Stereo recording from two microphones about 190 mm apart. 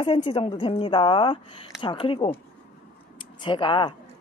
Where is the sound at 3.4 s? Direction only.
25° left (ahead or behind).